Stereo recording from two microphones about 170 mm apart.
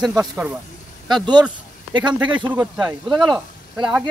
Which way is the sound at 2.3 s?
5° right (ahead or behind).